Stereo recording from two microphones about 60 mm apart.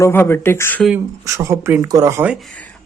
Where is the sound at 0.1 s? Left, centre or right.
Left.